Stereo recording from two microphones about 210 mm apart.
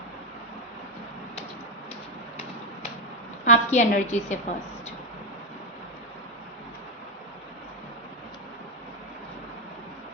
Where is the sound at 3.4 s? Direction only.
35° left (ahead or behind).